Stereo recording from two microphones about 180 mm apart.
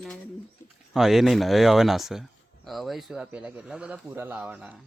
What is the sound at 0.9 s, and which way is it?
Speech, centre (ahead or behind).